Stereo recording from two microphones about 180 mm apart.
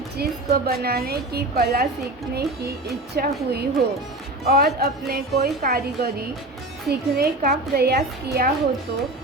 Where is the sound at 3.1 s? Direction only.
60° right (ahead or behind).